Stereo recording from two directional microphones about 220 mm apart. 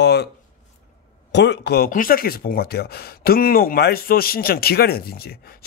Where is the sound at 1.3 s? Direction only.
50° left (ahead or behind).